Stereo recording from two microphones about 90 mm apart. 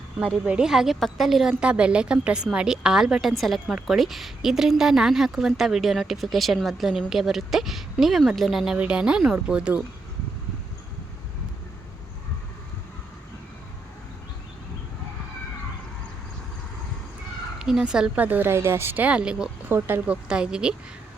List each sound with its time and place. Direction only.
0.2 s a woman's voice: 15° right (ahead or behind)
17.6 s a woman's voice: 5° right (ahead or behind)
19.6 s speech: 20° right (ahead or behind)
20.2 s a woman's voice: 10° right (ahead or behind)